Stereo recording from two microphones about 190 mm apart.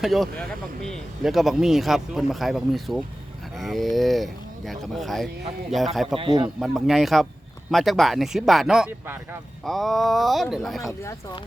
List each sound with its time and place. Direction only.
0.0 s speech: centre (ahead or behind)
6.1 s a man's voice: 25° right (ahead or behind)
6.6 s speech: centre (ahead or behind)